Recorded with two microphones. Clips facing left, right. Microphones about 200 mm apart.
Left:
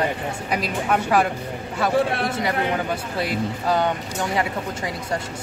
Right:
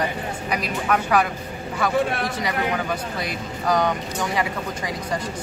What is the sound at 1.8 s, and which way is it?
Speech, 25° left (ahead or behind).